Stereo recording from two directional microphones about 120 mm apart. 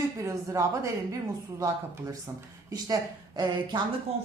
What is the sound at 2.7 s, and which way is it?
A woman's voice, 35° right (ahead or behind).